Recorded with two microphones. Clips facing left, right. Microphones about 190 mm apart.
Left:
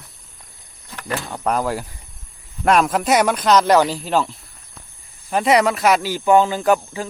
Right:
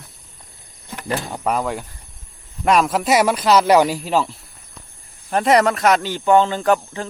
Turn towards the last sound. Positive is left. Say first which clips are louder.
# left 1 dB
turn(degrees=10)  # may be behind; listen again after turning